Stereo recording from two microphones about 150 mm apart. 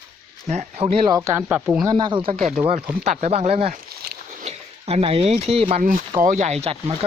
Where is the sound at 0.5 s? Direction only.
50° right (ahead or behind).